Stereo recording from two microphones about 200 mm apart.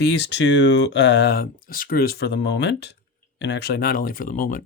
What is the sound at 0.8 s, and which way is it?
Speech, 60° left (ahead or behind).